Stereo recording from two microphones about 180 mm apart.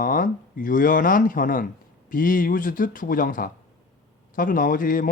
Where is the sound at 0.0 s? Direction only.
50° left (ahead or behind).